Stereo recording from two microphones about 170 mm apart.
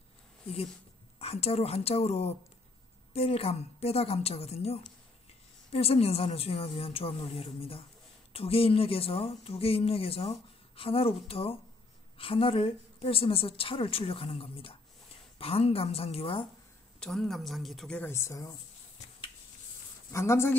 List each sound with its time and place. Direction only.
1.2 s a woman's voice: 35° left (ahead or behind)
17.0 s speech: centre (ahead or behind); by 18.6 s 20° left (ahead or behind)
20.1 s speech: 15° left (ahead or behind)